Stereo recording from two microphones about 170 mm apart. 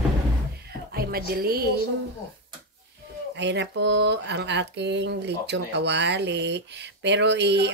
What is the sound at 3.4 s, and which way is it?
Speech, 90° right.